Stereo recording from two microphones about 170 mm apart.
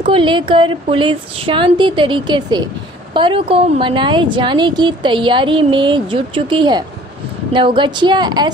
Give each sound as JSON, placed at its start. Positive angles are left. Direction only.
{"t": 0.1, "sound": "a woman's voice", "side_deg": -30}